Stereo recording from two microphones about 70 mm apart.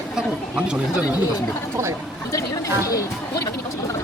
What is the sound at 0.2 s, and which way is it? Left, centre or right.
Chatter, centre.